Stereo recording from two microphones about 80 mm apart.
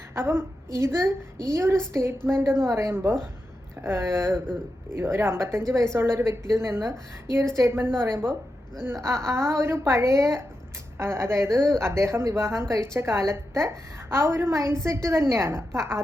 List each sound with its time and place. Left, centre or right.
0.1 s a woman's voice: right